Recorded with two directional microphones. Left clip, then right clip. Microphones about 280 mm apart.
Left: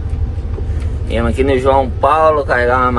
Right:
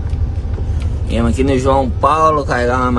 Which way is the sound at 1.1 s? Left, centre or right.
Centre.